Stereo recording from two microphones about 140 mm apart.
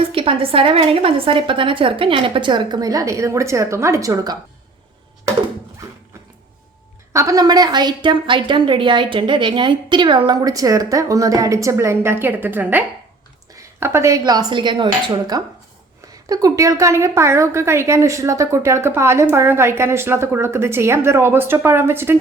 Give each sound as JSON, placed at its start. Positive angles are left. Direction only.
{"t": 0.1, "sound": "a woman's voice", "side_deg": -40}
{"t": 7.1, "sound": "a woman's voice", "side_deg": -25}